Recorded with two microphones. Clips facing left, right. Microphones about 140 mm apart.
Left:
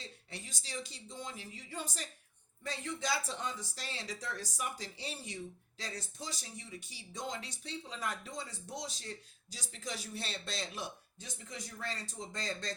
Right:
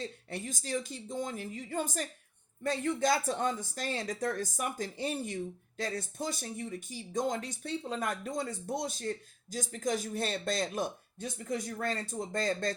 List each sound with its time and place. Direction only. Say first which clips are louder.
0.0 s speech: right 10 dB; 50° right (ahead or behind)